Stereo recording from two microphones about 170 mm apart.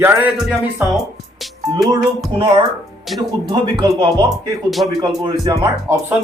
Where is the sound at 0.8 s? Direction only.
10° right (ahead or behind).